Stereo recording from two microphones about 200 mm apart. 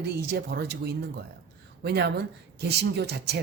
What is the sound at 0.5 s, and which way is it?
Speech, 55° right (ahead or behind).